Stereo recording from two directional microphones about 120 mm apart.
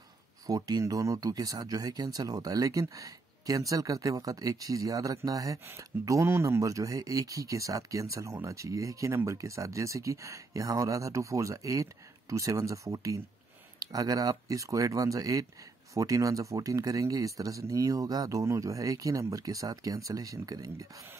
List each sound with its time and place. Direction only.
0.5 s speech: 35° right (ahead or behind)